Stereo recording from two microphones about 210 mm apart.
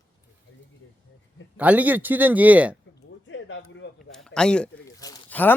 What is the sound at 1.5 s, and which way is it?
A man's voice, 5° right (ahead or behind).